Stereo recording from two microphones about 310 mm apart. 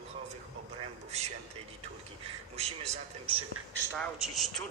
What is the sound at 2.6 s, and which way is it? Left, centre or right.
Speech, centre.